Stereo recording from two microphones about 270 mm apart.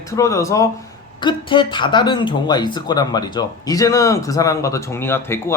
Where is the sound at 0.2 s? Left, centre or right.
Centre.